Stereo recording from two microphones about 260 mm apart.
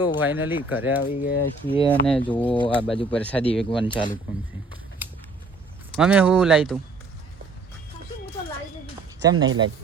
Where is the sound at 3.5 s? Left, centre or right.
Centre.